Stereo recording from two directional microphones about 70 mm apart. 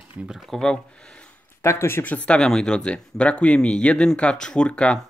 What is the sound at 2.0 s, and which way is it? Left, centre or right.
Speech, left.